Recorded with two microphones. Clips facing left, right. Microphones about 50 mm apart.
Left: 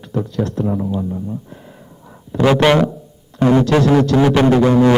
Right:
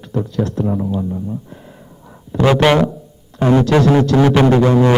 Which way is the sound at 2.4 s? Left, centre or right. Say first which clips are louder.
Even; centre.